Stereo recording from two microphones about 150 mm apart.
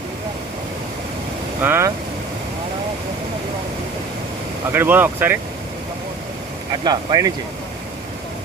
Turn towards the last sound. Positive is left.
turn(degrees=-25)  # may be behind; listen again after turning